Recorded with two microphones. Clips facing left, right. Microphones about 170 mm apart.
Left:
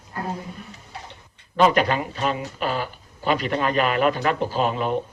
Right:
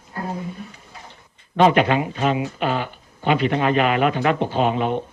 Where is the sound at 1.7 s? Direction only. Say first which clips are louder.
Right 5 dB; 40° left (ahead or behind).